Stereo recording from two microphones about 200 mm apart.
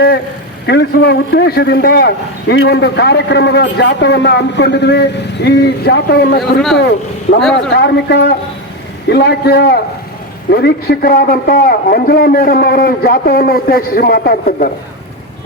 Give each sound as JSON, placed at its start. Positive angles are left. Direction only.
{"t": 0.7, "sound": "a man's voice", "side_deg": 55}
{"t": 7.5, "sound": "a man's voice", "side_deg": 60}